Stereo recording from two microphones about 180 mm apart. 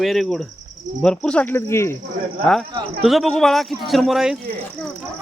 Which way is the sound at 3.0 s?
Centre (ahead or behind).